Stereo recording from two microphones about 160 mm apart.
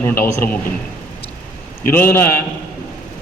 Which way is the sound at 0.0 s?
10° left (ahead or behind).